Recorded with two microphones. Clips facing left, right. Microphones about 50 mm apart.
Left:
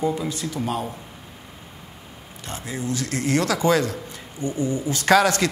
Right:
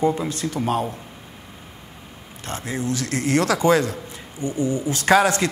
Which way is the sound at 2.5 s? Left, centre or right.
Right.